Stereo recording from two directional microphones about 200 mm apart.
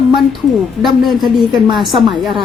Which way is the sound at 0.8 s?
Centre (ahead or behind).